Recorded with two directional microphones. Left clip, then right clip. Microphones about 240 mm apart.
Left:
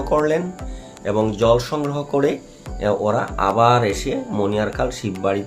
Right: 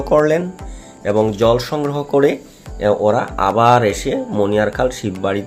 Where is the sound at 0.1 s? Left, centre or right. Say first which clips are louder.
Right 5 dB; centre.